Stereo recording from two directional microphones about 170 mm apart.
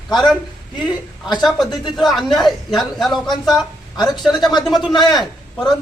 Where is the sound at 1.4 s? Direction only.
Centre (ahead or behind).